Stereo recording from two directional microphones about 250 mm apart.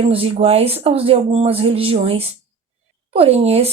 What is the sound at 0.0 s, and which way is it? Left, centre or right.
Speech, right.